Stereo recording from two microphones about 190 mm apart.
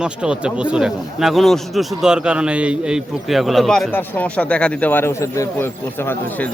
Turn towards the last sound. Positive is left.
turn(degrees=15)  # may be behind; listen again after turning